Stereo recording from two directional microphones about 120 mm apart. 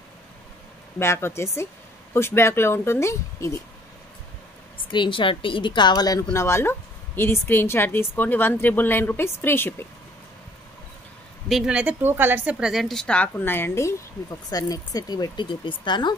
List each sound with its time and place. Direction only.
0.9 s a woman's voice: 20° left (ahead or behind)
4.9 s speech: 45° left (ahead or behind)
6.3 s a woman's voice: 20° left (ahead or behind)
11.4 s a woman's voice: 5° right (ahead or behind); by 13.9 s 20° left (ahead or behind)
14.5 s speech: 30° left (ahead or behind)